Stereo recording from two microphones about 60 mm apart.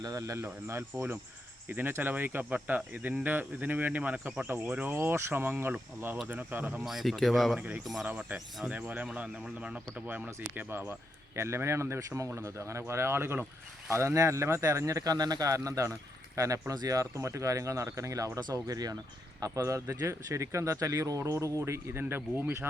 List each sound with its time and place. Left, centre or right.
0.0 s speech: right
1.7 s speech: right
4.9 s speech: right
6.8 s speech: centre
8.6 s speech: right
11.3 s speech: right
17.2 s speech: right
18.3 s speech: right
19.4 s speech: right